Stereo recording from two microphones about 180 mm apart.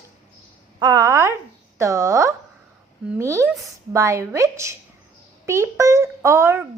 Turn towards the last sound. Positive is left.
turn(degrees=-15)  # may be behind; listen again after turning